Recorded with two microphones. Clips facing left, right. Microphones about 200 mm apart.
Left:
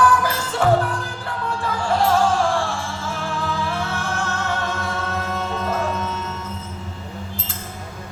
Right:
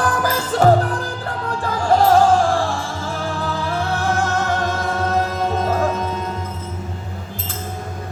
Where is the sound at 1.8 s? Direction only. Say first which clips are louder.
Right 5 dB; 40° right (ahead or behind).